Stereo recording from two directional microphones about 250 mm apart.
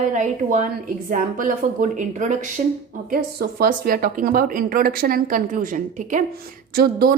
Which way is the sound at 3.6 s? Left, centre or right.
Right.